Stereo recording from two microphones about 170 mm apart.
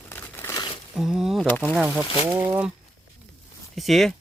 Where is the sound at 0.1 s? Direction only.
15° left (ahead or behind).